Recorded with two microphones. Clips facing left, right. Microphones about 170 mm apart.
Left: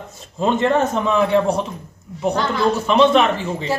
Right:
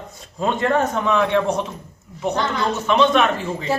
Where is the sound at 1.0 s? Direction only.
35° left (ahead or behind).